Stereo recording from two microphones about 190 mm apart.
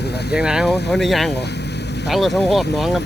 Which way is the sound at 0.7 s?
60° left (ahead or behind).